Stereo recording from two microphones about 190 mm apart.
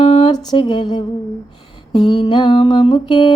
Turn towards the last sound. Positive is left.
turn(degrees=25)  # may be behind; listen again after turning